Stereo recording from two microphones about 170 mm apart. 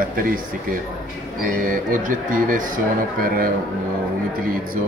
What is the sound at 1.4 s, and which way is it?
A man's voice, 55° right (ahead or behind).